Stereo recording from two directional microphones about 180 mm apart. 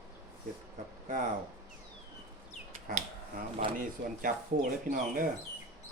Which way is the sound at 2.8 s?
50° right (ahead or behind).